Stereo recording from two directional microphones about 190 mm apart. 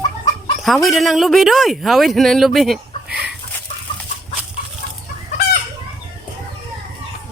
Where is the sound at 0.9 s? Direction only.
Centre (ahead or behind).